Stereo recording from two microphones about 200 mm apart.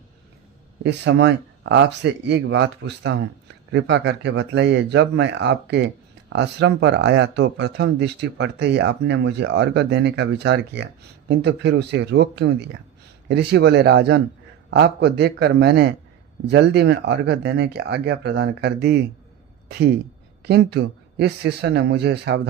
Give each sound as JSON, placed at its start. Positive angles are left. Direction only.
{"t": 0.9, "sound": "speech", "side_deg": -60}
{"t": 20.4, "sound": "speech", "side_deg": -55}